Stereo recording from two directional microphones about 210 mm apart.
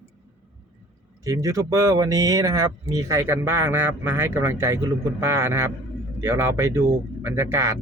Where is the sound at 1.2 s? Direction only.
15° right (ahead or behind).